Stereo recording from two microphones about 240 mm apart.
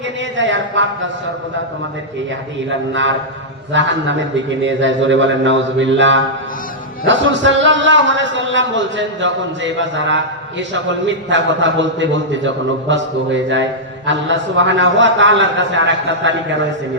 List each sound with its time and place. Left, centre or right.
0.3 s speech: right
2.6 s speech: right